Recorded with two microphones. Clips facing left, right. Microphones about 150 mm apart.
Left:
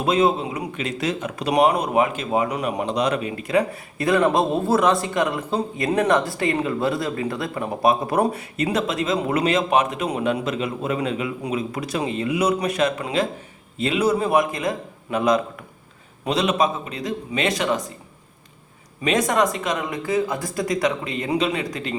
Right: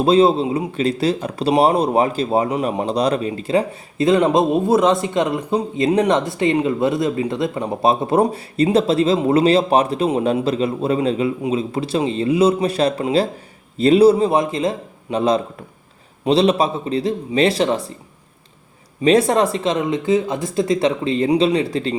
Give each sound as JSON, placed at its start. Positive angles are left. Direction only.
{"t": 0.0, "sound": "a man's voice", "side_deg": -30}
{"t": 19.0, "sound": "a man's voice", "side_deg": -30}